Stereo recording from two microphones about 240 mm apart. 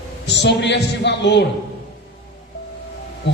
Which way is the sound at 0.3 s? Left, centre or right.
Left.